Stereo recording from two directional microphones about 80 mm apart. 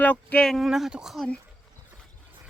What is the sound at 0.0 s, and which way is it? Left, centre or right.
Speech, centre.